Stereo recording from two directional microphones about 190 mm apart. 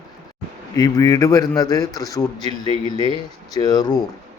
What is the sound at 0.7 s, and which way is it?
Speech, 20° left (ahead or behind).